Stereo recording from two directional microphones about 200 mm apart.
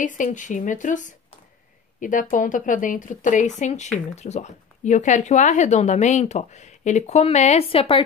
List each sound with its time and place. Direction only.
0.0 s speech: 40° left (ahead or behind)